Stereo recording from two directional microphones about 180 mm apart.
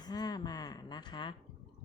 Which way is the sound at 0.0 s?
20° left (ahead or behind).